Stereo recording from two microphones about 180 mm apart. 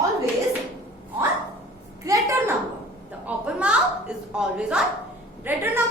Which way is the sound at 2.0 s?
15° right (ahead or behind).